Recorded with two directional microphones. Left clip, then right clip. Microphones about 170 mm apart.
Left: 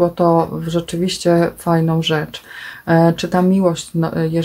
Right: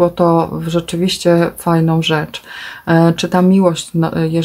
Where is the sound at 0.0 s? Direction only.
25° right (ahead or behind).